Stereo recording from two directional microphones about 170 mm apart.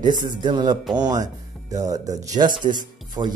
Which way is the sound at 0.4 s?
25° right (ahead or behind).